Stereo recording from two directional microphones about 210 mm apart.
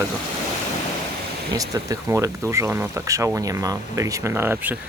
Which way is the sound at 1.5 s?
15° right (ahead or behind).